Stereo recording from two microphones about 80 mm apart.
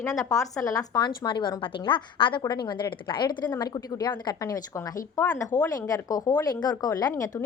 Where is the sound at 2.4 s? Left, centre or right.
Left.